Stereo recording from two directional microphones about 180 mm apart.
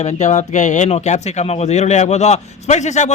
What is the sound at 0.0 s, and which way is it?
Speech, 40° left (ahead or behind).